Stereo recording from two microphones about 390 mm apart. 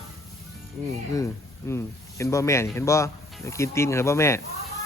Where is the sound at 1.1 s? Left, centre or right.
Centre.